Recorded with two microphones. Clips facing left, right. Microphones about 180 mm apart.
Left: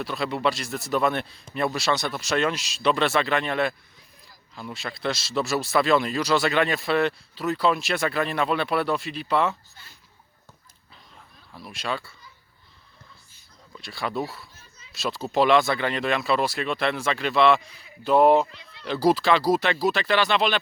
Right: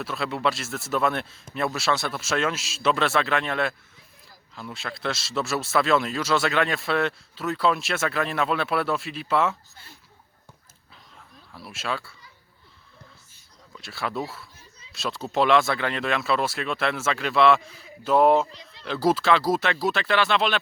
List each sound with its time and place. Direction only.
0.0 s speech: centre (ahead or behind)
11.5 s speech: 5° right (ahead or behind)
13.7 s speech: centre (ahead or behind)
18.5 s a sound: 35° right (ahead or behind)
18.9 s speech: centre (ahead or behind)